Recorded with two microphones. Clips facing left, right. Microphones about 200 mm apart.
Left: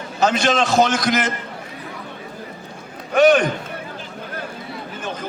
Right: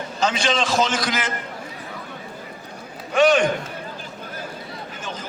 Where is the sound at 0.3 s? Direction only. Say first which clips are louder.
Left 4 dB; 50° left (ahead or behind).